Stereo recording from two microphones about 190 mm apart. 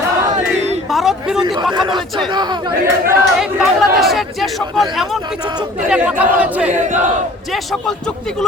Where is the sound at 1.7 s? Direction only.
25° right (ahead or behind).